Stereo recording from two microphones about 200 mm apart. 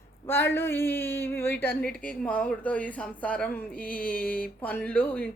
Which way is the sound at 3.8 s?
45° left (ahead or behind).